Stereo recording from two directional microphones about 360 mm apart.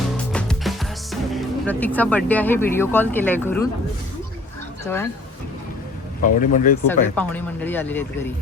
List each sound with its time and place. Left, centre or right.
0.3 s music: centre
6.2 s speech: left
6.8 s speech: centre